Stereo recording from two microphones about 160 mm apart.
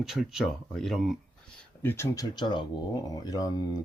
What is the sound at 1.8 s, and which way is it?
Speech, 15° left (ahead or behind).